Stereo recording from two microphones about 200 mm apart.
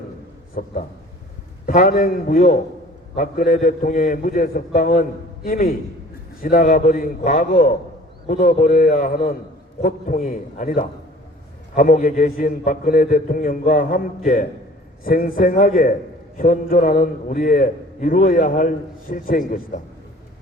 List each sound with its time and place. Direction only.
0.5 s a man's voice: 45° left (ahead or behind)